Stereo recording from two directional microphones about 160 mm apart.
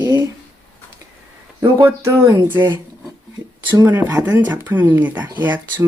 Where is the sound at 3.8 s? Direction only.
10° right (ahead or behind).